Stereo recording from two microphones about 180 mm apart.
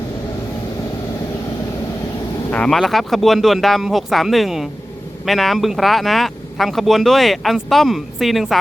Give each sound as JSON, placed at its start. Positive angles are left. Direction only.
{"t": 2.5, "sound": "speech", "side_deg": 5}